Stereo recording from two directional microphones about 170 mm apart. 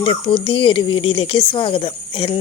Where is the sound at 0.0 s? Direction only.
30° left (ahead or behind).